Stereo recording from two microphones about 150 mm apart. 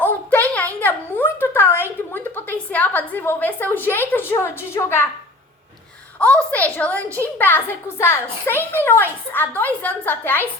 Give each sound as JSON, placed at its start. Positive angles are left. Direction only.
{"t": 0.0, "sound": "a sound", "side_deg": 10}
{"t": 4.3, "sound": "a woman's voice", "side_deg": 15}
{"t": 6.1, "sound": "a woman's voice", "side_deg": 10}